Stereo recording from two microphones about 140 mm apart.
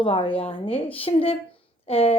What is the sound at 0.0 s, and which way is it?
A woman's voice, 40° left (ahead or behind).